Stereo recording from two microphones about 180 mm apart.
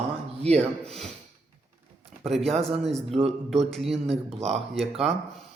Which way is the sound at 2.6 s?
35° right (ahead or behind).